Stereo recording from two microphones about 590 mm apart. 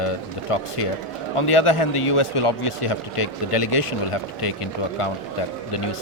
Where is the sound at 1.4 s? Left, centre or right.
Left.